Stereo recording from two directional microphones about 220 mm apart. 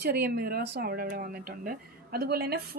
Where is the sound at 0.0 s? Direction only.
45° right (ahead or behind).